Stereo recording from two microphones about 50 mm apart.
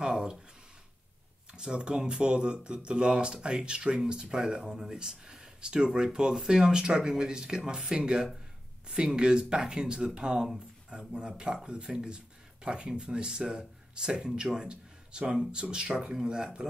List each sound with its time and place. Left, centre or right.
0.0 s speech: centre
1.5 s speech: centre